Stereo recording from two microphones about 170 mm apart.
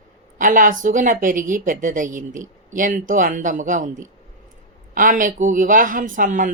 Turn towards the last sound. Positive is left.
turn(degrees=-50)  # may be behind; listen again after turning